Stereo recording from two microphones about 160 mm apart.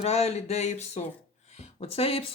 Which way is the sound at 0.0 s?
40° left (ahead or behind).